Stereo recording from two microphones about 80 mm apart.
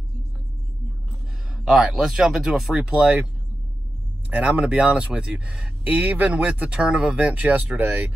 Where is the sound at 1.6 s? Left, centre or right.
Centre.